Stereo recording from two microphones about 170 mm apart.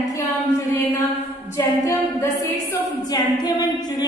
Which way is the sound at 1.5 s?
15° left (ahead or behind).